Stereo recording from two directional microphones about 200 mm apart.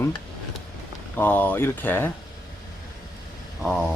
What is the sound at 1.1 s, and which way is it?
Speech, 10° left (ahead or behind).